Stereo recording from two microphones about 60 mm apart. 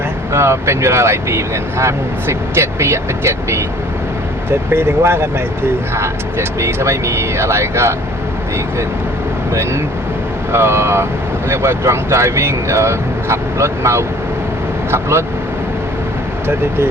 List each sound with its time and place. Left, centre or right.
0.3 s speech: right
10.5 s speech: right
16.5 s speech: right